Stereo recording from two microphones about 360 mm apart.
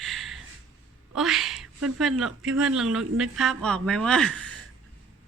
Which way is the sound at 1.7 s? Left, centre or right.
Right.